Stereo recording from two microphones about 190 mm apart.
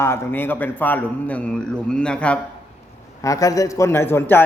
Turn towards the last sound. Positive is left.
turn(degrees=10)  # may be behind; listen again after turning